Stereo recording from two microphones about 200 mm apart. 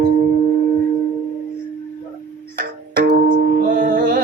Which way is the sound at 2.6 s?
45° right (ahead or behind).